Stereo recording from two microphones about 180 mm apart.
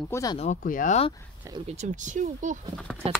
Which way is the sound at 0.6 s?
50° left (ahead or behind).